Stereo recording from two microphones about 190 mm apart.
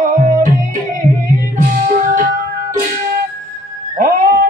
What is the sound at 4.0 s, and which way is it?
Cat, 45° right (ahead or behind).